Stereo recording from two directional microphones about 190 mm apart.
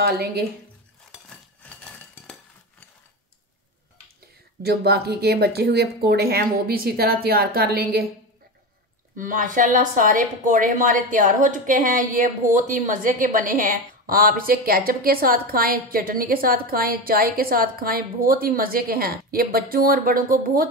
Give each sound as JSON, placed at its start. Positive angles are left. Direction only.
{"t": 0.0, "sound": "speech", "side_deg": -55}
{"t": 1.3, "sound": "a sound", "side_deg": 5}
{"t": 4.6, "sound": "speech", "side_deg": -55}
{"t": 9.1, "sound": "speech", "side_deg": -45}